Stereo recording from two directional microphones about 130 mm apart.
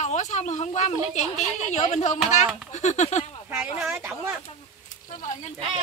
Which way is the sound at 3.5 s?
5° right (ahead or behind).